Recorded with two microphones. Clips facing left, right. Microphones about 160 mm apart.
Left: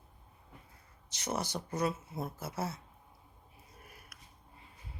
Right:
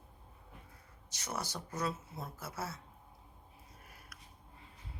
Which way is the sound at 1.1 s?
20° left (ahead or behind).